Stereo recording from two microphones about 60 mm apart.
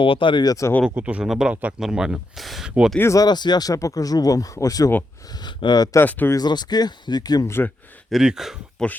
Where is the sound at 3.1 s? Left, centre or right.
Left.